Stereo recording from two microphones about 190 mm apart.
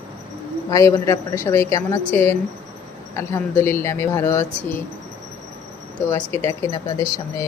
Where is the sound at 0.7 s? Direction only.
15° left (ahead or behind).